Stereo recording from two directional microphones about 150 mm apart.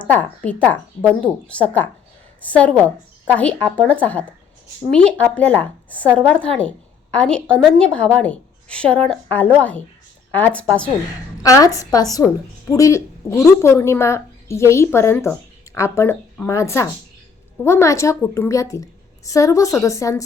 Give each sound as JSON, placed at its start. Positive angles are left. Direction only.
{"t": 0.1, "sound": "a woman's voice", "side_deg": 10}
{"t": 11.4, "sound": "a woman's voice", "side_deg": 20}